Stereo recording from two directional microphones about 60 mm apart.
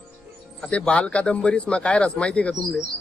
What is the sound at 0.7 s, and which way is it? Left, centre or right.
Speech, left.